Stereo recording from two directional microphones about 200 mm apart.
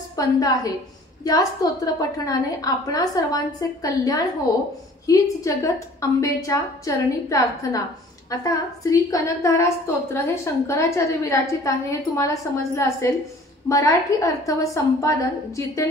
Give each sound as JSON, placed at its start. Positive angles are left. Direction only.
{"t": 0.2, "sound": "a woman's voice", "side_deg": 15}